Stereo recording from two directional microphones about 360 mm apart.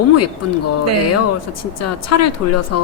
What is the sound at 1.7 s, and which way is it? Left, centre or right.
Speech, left.